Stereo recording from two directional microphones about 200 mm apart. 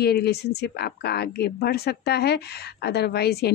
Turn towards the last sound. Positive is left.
turn(degrees=55)  # may be behind; listen again after turning